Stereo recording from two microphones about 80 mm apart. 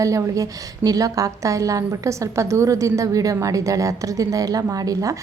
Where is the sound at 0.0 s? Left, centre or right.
Right.